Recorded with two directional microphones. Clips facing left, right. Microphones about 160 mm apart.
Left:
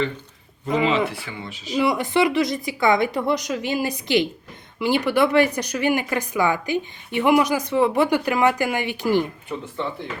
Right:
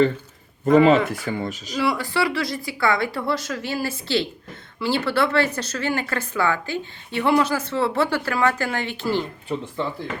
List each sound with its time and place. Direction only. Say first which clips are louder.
0.6 s speech: right 6 dB; 45° right (ahead or behind)
1.7 s speech: left 4 dB; 20° left (ahead or behind)